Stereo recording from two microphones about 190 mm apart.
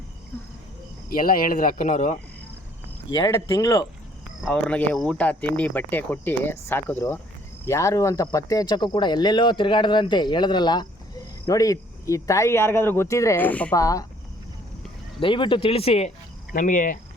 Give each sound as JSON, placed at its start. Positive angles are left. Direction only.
{"t": 1.1, "sound": "speech", "side_deg": 50}
{"t": 3.1, "sound": "speech", "side_deg": 20}
{"t": 4.4, "sound": "speech", "side_deg": 5}
{"t": 15.2, "sound": "speech", "side_deg": 25}
{"t": 16.5, "sound": "speech", "side_deg": 45}